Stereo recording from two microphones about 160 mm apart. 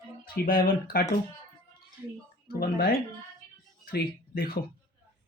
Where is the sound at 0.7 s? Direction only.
65° left (ahead or behind).